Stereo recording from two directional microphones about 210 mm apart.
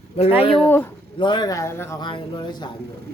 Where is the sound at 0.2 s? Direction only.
30° left (ahead or behind).